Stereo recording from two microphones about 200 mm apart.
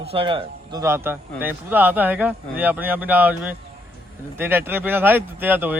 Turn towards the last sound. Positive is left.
turn(degrees=-10)  # may be behind; listen again after turning